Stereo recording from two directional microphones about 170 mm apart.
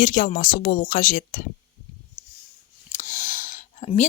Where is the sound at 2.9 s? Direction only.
50° left (ahead or behind).